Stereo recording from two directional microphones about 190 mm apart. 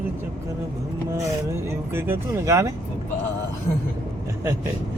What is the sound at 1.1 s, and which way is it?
Speech, 15° right (ahead or behind).